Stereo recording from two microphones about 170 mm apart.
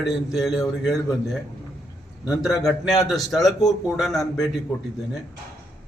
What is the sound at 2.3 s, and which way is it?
A man's voice, centre (ahead or behind).